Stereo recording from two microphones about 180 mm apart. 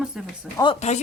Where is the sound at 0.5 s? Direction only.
25° left (ahead or behind).